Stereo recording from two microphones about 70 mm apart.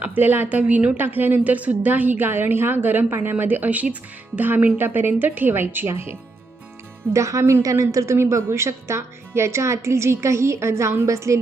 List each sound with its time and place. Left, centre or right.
0.0 s a woman's voice: right
7.1 s a woman's voice: right